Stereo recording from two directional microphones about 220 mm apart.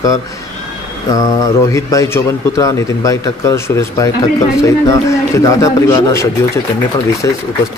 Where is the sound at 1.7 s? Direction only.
15° left (ahead or behind).